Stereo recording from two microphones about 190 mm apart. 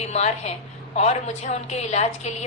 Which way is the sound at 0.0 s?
35° left (ahead or behind).